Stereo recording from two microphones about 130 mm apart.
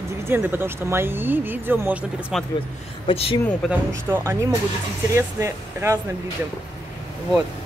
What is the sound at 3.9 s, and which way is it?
Speech, 20° right (ahead or behind).